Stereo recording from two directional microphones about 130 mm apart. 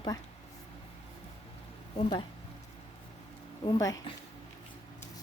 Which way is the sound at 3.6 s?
30° left (ahead or behind).